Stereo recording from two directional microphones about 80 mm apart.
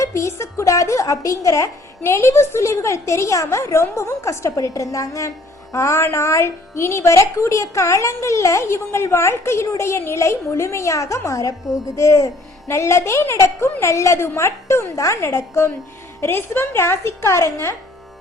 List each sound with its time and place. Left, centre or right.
0.0 s a woman's voice: left